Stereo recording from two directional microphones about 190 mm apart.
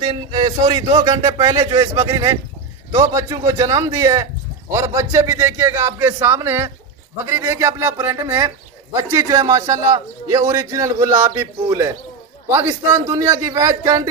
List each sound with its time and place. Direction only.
0.0 s speech: 25° right (ahead or behind)